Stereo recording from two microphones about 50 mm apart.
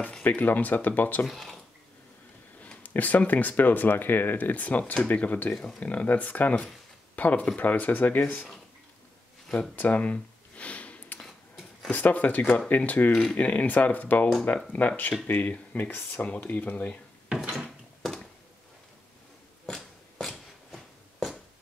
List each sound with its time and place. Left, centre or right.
0.2 s speech: left
1.2 s speech: centre
2.8 s speech: left
5.5 s speech: centre; by 8.2 s left
9.8 s a sound: left
11.9 s speech: left
13.1 s speech: centre
13.4 s speech: left
17.3 s wood: centre
19.6 s a sound: centre